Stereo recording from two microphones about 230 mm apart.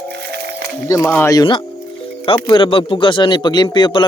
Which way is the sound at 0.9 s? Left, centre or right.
Centre.